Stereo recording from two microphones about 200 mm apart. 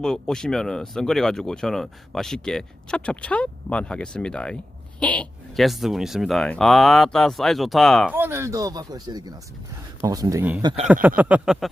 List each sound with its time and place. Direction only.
0.0 s speech: 5° left (ahead or behind)
8.1 s speech: 10° right (ahead or behind)
10.6 s speech: 20° right (ahead or behind)
11.2 s speech: 5° right (ahead or behind)